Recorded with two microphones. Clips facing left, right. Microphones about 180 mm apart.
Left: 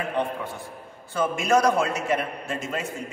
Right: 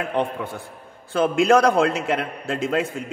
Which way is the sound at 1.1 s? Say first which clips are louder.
Right 5 dB; 60° right (ahead or behind).